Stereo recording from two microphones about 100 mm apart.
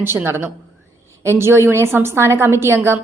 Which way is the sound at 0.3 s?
25° right (ahead or behind).